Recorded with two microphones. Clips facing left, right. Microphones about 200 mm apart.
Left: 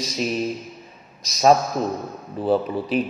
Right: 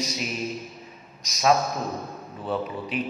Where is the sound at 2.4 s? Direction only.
35° left (ahead or behind).